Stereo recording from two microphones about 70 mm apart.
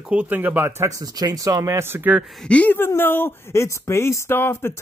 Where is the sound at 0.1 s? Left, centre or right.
Right.